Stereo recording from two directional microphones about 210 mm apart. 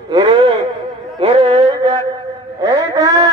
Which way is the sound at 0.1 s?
20° right (ahead or behind).